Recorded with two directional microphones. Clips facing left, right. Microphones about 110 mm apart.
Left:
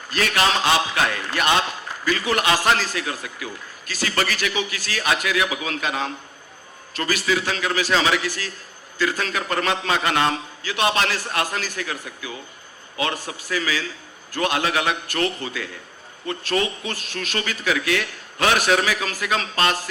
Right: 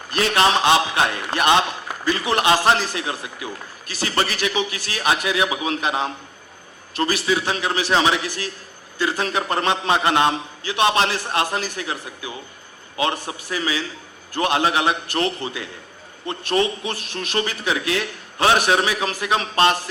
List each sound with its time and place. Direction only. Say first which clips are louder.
0.2 s a man's voice: right 3 dB; 25° right (ahead or behind)